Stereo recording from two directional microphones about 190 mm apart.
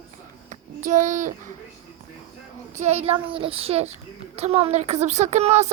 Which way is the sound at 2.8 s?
35° right (ahead or behind).